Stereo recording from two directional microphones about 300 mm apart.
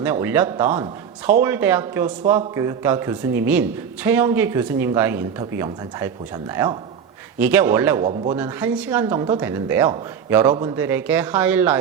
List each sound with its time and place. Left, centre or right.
0.0 s speech: centre
8.0 s speech: centre
8.4 s speech: centre